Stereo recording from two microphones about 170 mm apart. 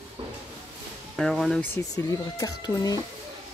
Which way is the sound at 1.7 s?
20° left (ahead or behind).